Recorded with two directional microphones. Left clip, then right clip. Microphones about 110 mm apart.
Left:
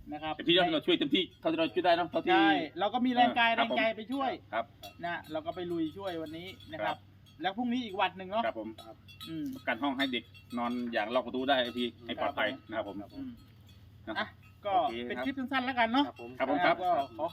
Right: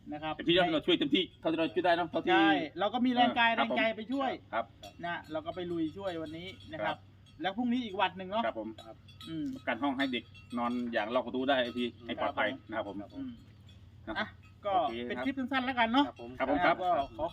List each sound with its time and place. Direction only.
0.1 s speech: 15° right (ahead or behind)
0.3 s a man's voice: centre (ahead or behind)
2.2 s speech: 10° right (ahead or behind)
8.4 s a man's voice: 5° left (ahead or behind)
14.2 s speech: 15° right (ahead or behind)